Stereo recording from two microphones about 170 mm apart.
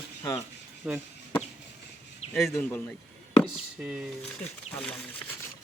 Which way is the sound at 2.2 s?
40° left (ahead or behind).